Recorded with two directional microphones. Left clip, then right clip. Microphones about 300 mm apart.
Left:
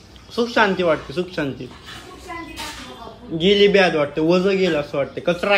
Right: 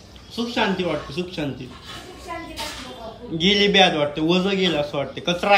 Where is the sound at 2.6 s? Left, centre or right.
Centre.